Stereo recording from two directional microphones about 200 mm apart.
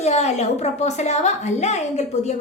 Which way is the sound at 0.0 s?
35° left (ahead or behind).